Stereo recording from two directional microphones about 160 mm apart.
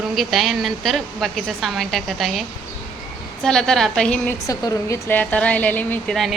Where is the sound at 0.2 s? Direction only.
Centre (ahead or behind).